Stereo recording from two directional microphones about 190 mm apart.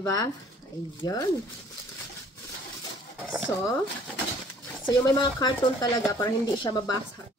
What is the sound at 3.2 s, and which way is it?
Speech, 5° right (ahead or behind).